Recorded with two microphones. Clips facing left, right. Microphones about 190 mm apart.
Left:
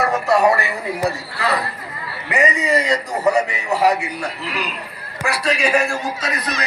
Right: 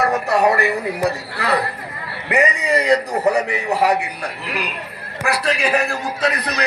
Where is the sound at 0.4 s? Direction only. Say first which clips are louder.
Right 1 dB; 60° right (ahead or behind).